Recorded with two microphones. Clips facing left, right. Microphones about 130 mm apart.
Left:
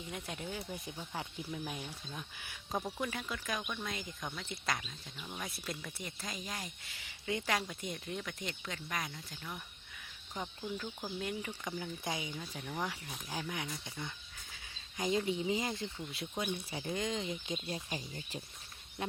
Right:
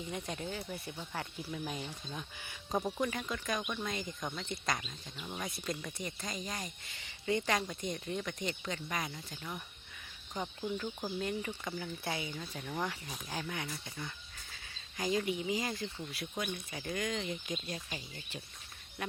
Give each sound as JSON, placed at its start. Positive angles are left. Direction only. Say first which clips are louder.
{"t": 0.1, "sound": "speech", "louder": "right 1 dB", "side_deg": 5}
{"t": 13.3, "sound": "speech", "louder": "even", "side_deg": 10}
{"t": 14.5, "sound": "a sound", "louder": "even", "side_deg": 20}
{"t": 15.3, "sound": "speech", "louder": "left 1 dB", "side_deg": 30}